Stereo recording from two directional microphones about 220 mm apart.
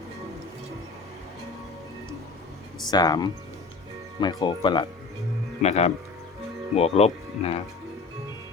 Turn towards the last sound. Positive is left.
turn(degrees=25)  # may be behind; listen again after turning